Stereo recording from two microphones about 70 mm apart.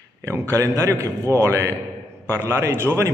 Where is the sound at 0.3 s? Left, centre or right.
Right.